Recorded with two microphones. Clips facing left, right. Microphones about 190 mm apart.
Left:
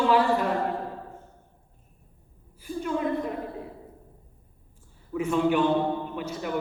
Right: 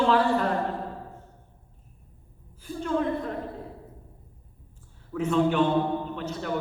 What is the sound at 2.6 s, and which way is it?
Speech, 10° left (ahead or behind).